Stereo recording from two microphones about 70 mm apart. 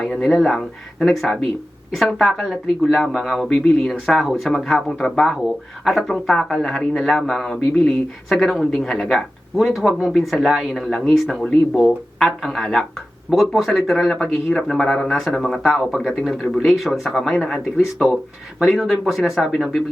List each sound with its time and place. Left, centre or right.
0.0 s speech: centre
11.8 s speech: centre